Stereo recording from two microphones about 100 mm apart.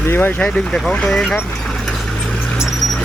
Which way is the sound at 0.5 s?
10° left (ahead or behind).